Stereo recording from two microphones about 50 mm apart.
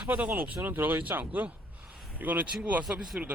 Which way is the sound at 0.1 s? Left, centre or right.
Right.